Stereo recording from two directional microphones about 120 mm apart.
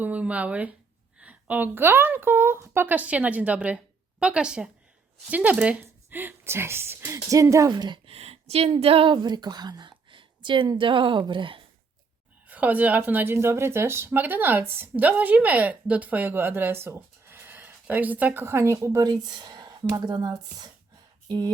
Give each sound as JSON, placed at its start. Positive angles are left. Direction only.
{"t": 0.0, "sound": "a woman's voice", "side_deg": -10}
{"t": 7.7, "sound": "a woman's voice", "side_deg": -40}
{"t": 8.1, "sound": "a woman's voice", "side_deg": -60}
{"t": 12.5, "sound": "speech", "side_deg": -15}